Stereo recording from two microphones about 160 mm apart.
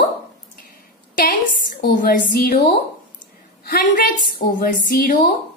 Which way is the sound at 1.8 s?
65° left (ahead or behind).